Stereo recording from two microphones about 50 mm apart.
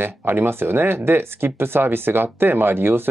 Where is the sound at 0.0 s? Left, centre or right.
Right.